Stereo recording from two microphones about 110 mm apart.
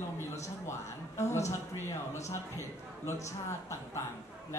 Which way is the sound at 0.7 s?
25° left (ahead or behind).